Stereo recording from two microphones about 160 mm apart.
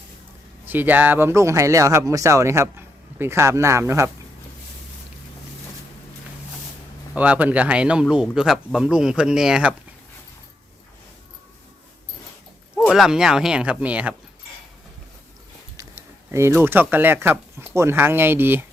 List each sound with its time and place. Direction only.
0.6 s speech: 10° right (ahead or behind)
7.1 s speech: 10° right (ahead or behind)
12.9 s speech: 5° right (ahead or behind)
16.3 s speech: 15° right (ahead or behind)